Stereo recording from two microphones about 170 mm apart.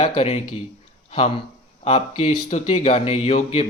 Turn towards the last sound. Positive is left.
turn(degrees=35)  # may be behind; listen again after turning